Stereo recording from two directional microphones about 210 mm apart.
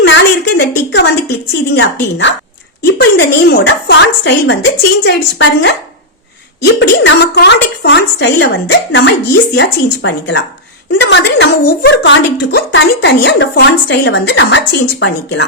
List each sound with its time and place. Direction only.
0.0 s a sound: 60° left (ahead or behind)
1.7 s speech: 60° left (ahead or behind)
6.7 s speech: 60° left (ahead or behind)